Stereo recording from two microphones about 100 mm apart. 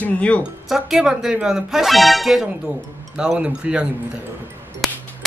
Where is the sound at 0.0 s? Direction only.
15° left (ahead or behind).